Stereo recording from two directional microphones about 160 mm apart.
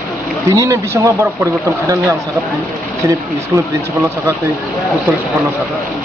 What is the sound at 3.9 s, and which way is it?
Speech, 15° right (ahead or behind).